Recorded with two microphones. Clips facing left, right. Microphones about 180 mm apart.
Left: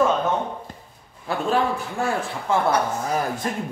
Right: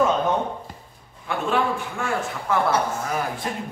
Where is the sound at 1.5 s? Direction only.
35° left (ahead or behind).